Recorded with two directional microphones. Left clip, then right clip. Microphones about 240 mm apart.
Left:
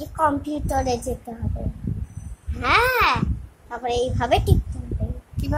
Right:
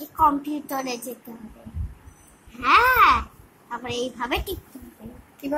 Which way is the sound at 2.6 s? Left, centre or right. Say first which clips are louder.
Right 2 dB; left.